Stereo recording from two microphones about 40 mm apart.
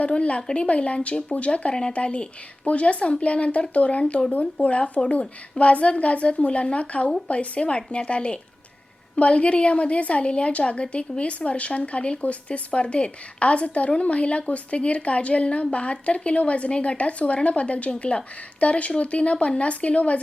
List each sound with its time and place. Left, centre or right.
0.0 s speech: left